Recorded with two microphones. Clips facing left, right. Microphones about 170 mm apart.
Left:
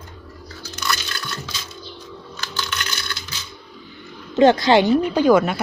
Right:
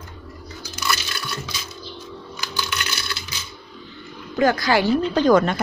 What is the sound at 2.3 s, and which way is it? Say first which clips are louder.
Coin: even; 10° right (ahead or behind).